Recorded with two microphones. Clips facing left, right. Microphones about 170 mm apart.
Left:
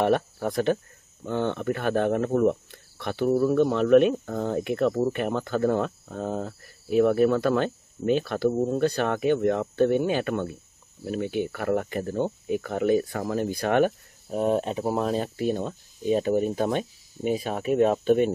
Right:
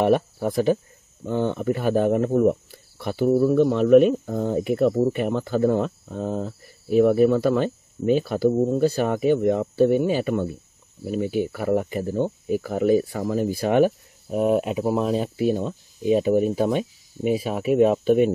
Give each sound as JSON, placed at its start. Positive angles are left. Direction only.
{"t": 0.0, "sound": "speech", "side_deg": -5}